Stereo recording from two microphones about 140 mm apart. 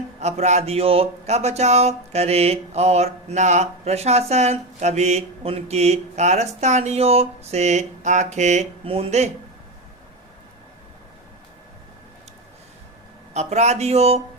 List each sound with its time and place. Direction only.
0.2 s speech: 55° right (ahead or behind)
8.8 s speech: 40° right (ahead or behind)
13.3 s speech: 55° right (ahead or behind)